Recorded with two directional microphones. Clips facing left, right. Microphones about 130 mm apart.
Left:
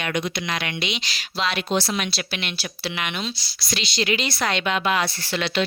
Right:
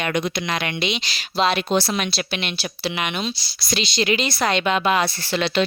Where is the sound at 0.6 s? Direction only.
25° right (ahead or behind).